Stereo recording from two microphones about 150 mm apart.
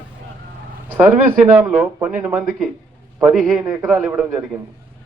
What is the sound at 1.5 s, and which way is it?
Speech, 10° right (ahead or behind).